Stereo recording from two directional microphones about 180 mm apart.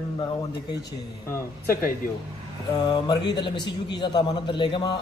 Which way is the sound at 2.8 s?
25° left (ahead or behind).